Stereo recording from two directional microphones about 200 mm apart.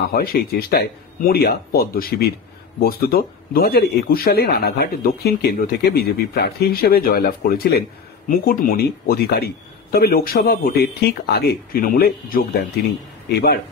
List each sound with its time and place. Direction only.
0.1 s speech: 50° left (ahead or behind)